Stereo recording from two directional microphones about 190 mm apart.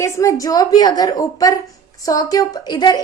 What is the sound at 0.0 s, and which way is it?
A woman's voice, 15° left (ahead or behind).